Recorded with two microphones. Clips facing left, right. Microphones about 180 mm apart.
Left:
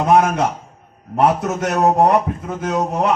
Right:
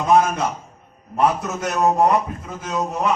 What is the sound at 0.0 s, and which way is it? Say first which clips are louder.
A man's voice: left 2 dB; 70° left (ahead or behind).